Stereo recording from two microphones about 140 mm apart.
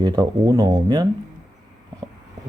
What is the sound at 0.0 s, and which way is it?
Speech, 30° right (ahead or behind).